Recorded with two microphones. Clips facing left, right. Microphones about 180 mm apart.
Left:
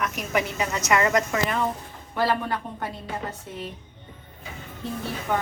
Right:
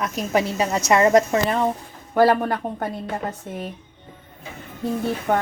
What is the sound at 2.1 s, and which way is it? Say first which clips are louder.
Speech: right 7 dB; 50° right (ahead or behind).